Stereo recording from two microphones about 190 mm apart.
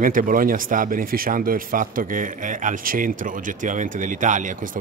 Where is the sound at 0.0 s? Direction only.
45° right (ahead or behind).